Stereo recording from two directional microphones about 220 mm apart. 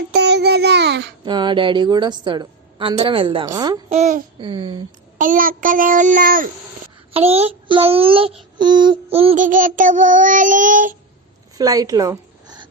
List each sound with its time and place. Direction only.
0.1 s child singing: 50° right (ahead or behind)
1.2 s a woman's voice: 20° right (ahead or behind)
3.9 s child singing: 30° right (ahead or behind)
4.4 s a woman's voice: 20° right (ahead or behind)
5.1 s child singing: 40° right (ahead or behind)
7.1 s a woman's voice: 25° right (ahead or behind)
8.5 s child singing: 20° right (ahead or behind); by 10.9 s 35° right (ahead or behind)
11.5 s a sound: 15° right (ahead or behind)